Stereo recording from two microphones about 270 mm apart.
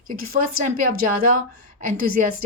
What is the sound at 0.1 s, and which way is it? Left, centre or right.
A woman's voice, right.